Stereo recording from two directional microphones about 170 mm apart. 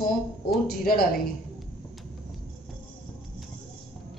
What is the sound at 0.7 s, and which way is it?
Speech, 60° left (ahead or behind).